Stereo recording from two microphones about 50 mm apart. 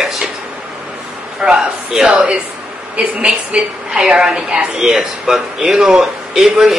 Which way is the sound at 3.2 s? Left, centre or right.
Centre.